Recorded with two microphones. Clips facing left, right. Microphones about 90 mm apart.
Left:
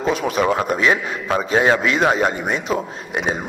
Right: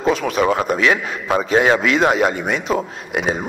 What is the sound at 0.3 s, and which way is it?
A man's voice, centre (ahead or behind).